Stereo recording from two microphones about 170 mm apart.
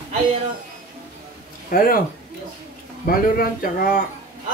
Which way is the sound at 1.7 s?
55° left (ahead or behind).